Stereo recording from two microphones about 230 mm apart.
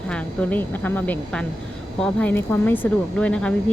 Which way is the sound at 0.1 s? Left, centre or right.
Centre.